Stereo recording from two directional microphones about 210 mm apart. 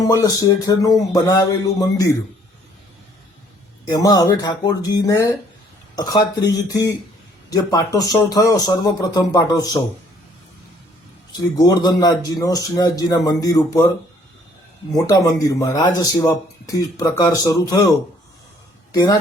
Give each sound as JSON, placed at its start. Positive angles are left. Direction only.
{"t": 0.0, "sound": "speech", "side_deg": 15}
{"t": 3.8, "sound": "speech", "side_deg": 15}
{"t": 11.3, "sound": "speech", "side_deg": 20}
{"t": 14.9, "sound": "speech", "side_deg": 15}
{"t": 18.9, "sound": "speech", "side_deg": 20}